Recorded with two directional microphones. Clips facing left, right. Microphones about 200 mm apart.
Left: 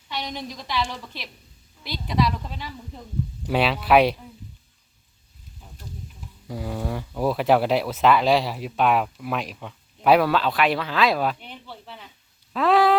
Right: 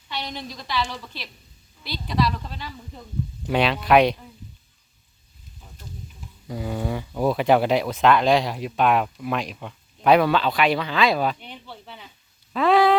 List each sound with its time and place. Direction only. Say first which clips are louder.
0.1 s a woman's voice: left 1 dB; 15° left (ahead or behind)
6.5 s speech: right 2 dB; centre (ahead or behind)
11.6 s a sound: even; centre (ahead or behind)